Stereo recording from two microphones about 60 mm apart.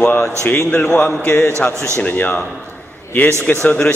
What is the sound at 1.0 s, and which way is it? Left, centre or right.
A man's voice, left.